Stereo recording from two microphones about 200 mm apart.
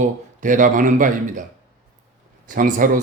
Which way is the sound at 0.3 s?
40° right (ahead or behind).